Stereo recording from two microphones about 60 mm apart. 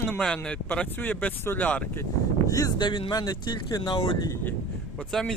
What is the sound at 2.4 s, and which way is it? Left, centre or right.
Speech, left.